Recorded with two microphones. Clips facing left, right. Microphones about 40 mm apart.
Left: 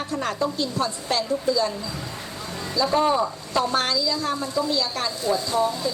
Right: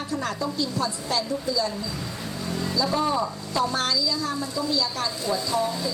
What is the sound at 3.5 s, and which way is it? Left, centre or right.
A woman's voice, left.